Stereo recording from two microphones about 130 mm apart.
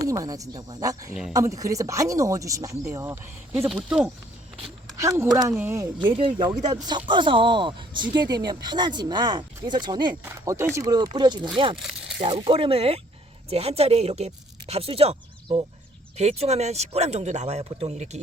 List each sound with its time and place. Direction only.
0.1 s speech: 25° right (ahead or behind)
3.8 s speech: 10° right (ahead or behind)
4.9 s speech: 20° right (ahead or behind)
5.5 s speech: 20° right (ahead or behind)
6.1 s speech: 40° right (ahead or behind)
10.4 s speech: 20° right (ahead or behind); by 11.8 s 40° right (ahead or behind)
11.8 s speech: 5° right (ahead or behind)
12.2 s speech: 45° right (ahead or behind); by 18.2 s 60° right (ahead or behind)